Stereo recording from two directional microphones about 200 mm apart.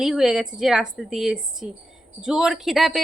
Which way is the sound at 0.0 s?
Centre (ahead or behind).